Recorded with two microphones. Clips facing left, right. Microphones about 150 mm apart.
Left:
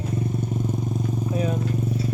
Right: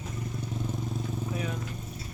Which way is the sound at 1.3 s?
35° left (ahead or behind).